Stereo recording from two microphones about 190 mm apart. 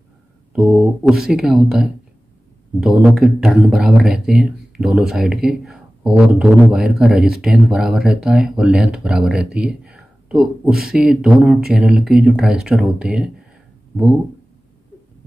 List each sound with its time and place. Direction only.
0.5 s speech: 5° right (ahead or behind)